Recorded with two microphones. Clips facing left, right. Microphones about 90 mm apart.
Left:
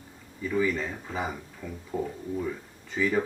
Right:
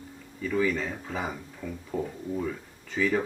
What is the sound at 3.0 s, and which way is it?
Speech, 5° left (ahead or behind).